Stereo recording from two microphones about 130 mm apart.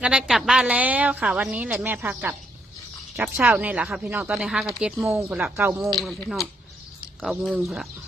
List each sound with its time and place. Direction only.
0.0 s a woman's voice: 5° right (ahead or behind)
5.3 s speech: 15° right (ahead or behind)
5.9 s speech: centre (ahead or behind)